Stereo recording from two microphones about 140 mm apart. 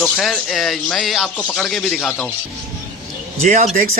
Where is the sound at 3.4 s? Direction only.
70° right (ahead or behind).